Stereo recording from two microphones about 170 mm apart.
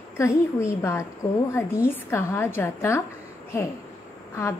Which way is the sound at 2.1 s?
15° left (ahead or behind).